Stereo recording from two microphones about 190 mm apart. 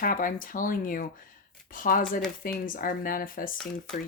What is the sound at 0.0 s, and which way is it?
Speech, 45° left (ahead or behind).